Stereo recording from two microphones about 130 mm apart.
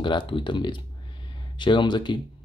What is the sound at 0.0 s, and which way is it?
Speech, 40° left (ahead or behind).